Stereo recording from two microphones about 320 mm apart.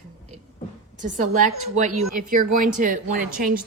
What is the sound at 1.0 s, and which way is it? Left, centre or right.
A woman's voice, right.